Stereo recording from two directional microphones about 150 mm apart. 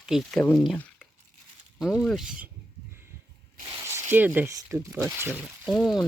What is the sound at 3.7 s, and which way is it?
Speech, 20° right (ahead or behind).